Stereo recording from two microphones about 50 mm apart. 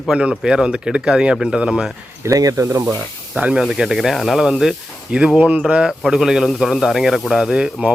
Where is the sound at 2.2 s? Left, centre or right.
Right.